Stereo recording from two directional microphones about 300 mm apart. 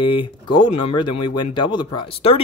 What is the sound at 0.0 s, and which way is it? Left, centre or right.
Speech, centre.